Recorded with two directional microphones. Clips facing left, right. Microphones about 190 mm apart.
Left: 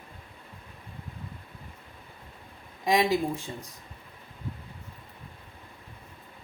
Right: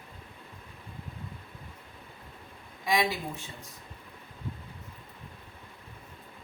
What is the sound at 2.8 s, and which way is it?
Speech, 40° left (ahead or behind).